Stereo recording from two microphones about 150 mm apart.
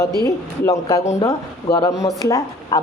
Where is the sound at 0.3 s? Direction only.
20° left (ahead or behind).